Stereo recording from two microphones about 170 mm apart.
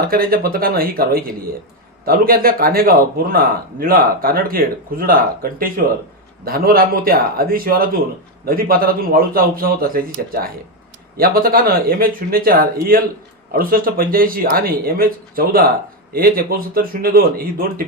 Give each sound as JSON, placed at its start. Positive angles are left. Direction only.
{"t": 0.1, "sound": "speech", "side_deg": -60}